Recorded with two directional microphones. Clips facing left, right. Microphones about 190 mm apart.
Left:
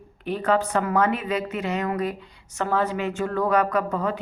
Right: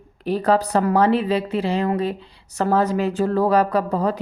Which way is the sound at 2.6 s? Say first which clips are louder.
Right 5 dB; 40° right (ahead or behind).